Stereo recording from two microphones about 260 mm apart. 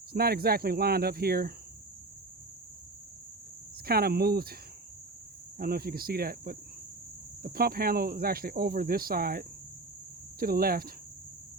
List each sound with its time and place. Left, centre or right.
0.1 s speech: right
3.8 s speech: right
5.5 s speech: right